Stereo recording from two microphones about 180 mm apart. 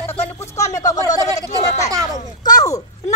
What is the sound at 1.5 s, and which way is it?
Speech, 40° left (ahead or behind).